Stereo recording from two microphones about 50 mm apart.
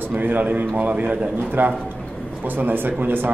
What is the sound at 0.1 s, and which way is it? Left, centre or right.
A man's voice, right.